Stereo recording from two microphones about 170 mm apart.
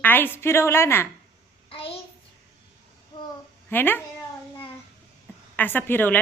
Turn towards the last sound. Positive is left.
turn(degrees=10)  # may be behind; listen again after turning